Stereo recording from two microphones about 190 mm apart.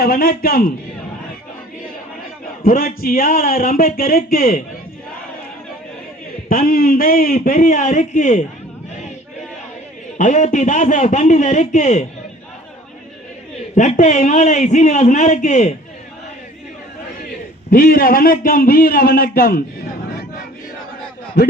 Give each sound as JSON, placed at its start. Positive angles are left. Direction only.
{"t": 0.0, "sound": "a man's voice", "side_deg": 50}
{"t": 2.6, "sound": "a man's voice", "side_deg": 50}
{"t": 6.5, "sound": "a man's voice", "side_deg": 50}
{"t": 10.2, "sound": "a man's voice", "side_deg": 40}
{"t": 13.7, "sound": "a man's voice", "side_deg": 40}
{"t": 17.7, "sound": "a man's voice", "side_deg": 45}